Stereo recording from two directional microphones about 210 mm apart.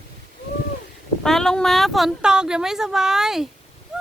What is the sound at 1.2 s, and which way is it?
Speech, centre (ahead or behind).